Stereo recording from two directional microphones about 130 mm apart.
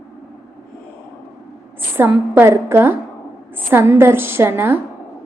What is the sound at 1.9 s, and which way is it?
A woman's voice, 15° right (ahead or behind).